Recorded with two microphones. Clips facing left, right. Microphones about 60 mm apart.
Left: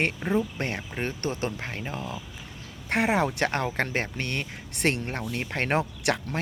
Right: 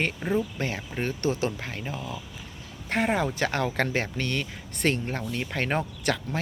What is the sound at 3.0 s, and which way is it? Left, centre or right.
Speech, left.